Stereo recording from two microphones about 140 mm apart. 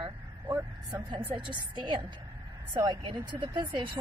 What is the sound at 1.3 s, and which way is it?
Speech, 35° right (ahead or behind).